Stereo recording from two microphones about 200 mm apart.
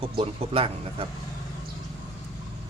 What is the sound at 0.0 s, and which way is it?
A man's voice, 30° right (ahead or behind).